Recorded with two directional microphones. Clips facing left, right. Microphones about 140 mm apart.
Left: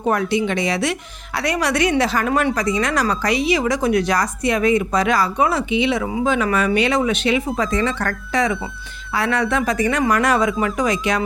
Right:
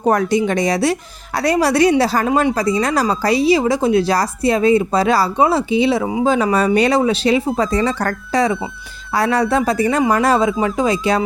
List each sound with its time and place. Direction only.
0.0 s a woman's voice: 40° right (ahead or behind)